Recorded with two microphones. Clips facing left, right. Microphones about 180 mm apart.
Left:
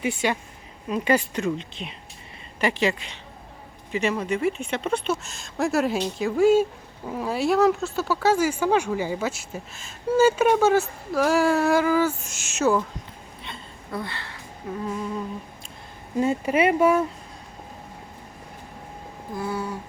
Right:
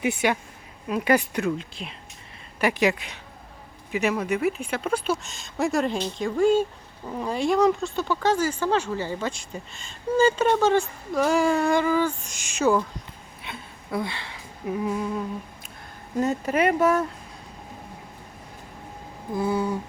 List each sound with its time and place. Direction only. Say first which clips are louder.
0.9 s speech: even; 10° right (ahead or behind)
2.6 s speech: right 1 dB; 10° right (ahead or behind)
3.9 s speech: even; 10° right (ahead or behind)
13.4 s a sound: right 2 dB; 10° right (ahead or behind)
16.1 s speech: left 2 dB; 10° left (ahead or behind)
19.4 s a sound: right 4 dB; 20° right (ahead or behind)